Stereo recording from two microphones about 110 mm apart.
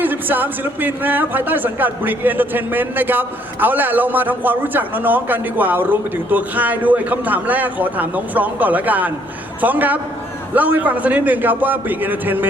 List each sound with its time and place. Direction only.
0.0 s speech: 15° right (ahead or behind)